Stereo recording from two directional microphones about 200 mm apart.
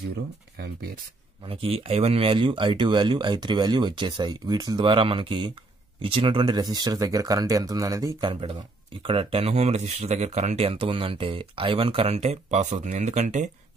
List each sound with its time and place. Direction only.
1.5 s speech: 30° right (ahead or behind)